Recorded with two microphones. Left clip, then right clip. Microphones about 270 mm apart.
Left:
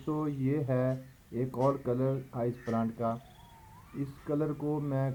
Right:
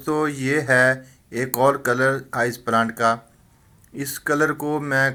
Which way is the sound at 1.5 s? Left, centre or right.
Right.